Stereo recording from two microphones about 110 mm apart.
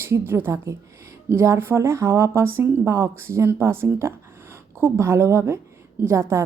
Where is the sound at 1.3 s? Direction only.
20° right (ahead or behind).